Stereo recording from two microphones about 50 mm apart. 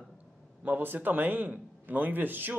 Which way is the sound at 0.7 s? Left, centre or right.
Right.